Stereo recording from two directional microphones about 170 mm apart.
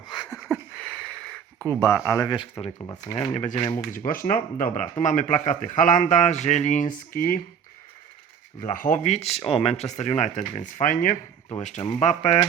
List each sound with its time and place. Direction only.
0.1 s a sound: 25° left (ahead or behind)
0.3 s a sound: 5° left (ahead or behind)
2.0 s speech: 20° left (ahead or behind)
3.3 s speech: 45° left (ahead or behind)
3.9 s speech: 55° left (ahead or behind)
8.6 s speech: 50° left (ahead or behind)